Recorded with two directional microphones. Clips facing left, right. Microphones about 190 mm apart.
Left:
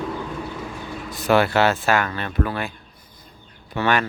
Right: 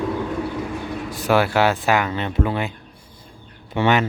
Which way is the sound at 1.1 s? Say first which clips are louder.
Left 1 dB; 10° right (ahead or behind).